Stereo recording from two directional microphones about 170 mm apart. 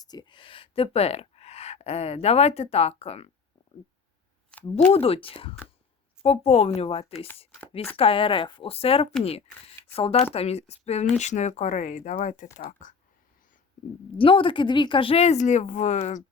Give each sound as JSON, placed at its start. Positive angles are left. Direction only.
{"t": 0.0, "sound": "speech", "side_deg": 25}
{"t": 4.9, "sound": "speech", "side_deg": 35}
{"t": 14.2, "sound": "speech", "side_deg": 30}